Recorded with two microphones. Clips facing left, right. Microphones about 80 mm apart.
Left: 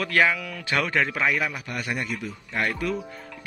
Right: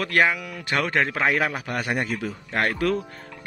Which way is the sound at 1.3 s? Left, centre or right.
Right.